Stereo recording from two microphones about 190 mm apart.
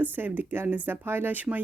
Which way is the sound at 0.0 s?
10° right (ahead or behind).